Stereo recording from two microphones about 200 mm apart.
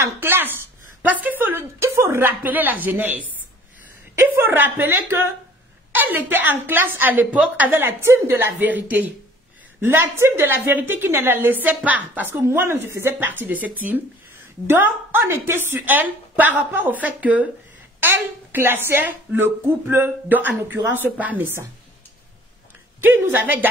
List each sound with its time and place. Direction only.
0.0 s speech: 10° right (ahead or behind)
14.7 s speech: 10° right (ahead or behind)
18.5 s speech: 10° right (ahead or behind)
23.0 s speech: 10° right (ahead or behind)